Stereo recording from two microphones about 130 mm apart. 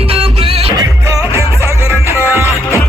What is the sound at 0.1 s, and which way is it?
Music, 50° right (ahead or behind).